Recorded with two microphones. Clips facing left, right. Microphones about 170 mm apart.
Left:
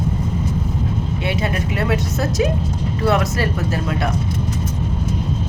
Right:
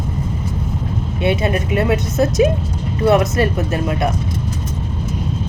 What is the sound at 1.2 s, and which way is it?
Speech, 25° right (ahead or behind).